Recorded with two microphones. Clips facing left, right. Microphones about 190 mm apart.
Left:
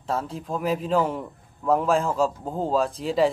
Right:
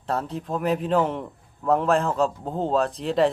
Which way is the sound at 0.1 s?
Centre (ahead or behind).